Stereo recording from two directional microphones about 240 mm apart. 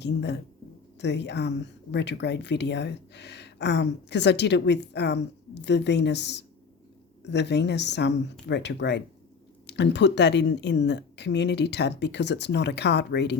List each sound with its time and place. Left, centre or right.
0.0 s speech: left